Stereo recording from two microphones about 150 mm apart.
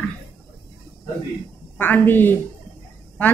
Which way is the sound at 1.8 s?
15° left (ahead or behind).